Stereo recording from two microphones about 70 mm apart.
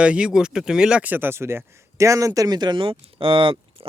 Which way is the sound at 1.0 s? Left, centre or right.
Right.